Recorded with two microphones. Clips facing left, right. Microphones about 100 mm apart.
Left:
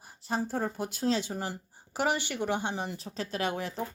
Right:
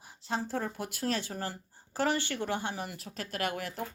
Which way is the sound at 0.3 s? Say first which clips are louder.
Left 2 dB; 15° left (ahead or behind).